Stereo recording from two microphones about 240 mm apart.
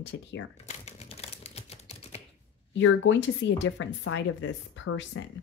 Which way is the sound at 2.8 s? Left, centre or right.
Left.